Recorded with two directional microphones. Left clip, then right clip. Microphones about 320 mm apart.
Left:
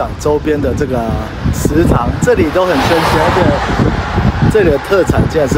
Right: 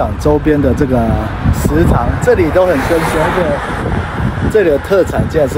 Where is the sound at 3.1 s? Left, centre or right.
Left.